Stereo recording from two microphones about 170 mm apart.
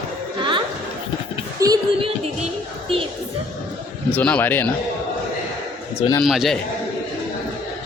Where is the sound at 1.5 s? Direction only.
20° right (ahead or behind).